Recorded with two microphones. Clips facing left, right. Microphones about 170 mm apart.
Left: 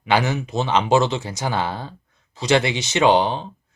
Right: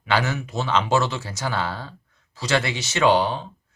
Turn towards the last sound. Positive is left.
turn(degrees=20)  # may be behind; listen again after turning